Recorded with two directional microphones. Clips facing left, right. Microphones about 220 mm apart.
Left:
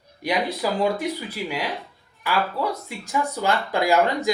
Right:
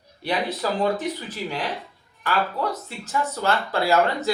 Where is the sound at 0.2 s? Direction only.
10° left (ahead or behind).